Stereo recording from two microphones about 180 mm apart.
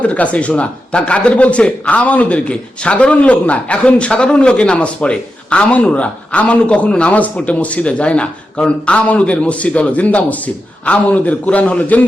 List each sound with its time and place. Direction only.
0.0 s a man's voice: 10° left (ahead or behind)